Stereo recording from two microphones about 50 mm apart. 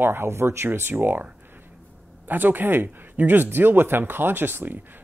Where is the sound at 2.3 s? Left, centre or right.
Right.